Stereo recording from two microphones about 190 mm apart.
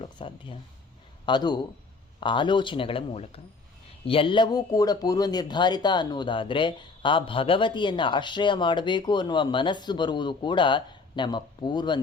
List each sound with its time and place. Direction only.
0.0 s speech: 25° left (ahead or behind)